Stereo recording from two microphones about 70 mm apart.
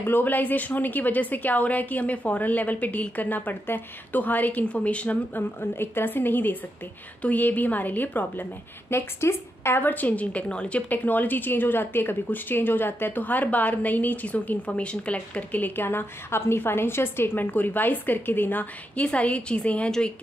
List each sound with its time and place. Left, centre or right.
0.0 s a woman's voice: left
5.6 s a woman's voice: left
8.9 s a woman's voice: left; by 19.9 s centre